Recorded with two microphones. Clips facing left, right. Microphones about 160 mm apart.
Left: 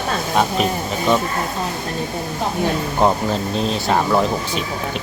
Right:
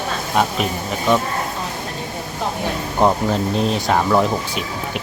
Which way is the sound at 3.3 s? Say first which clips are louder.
Right 2 dB; 15° right (ahead or behind).